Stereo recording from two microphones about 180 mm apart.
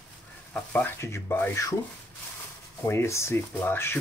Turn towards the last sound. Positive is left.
turn(degrees=10)  # may be behind; listen again after turning